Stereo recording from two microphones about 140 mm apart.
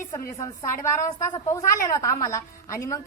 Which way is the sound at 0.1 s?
25° left (ahead or behind).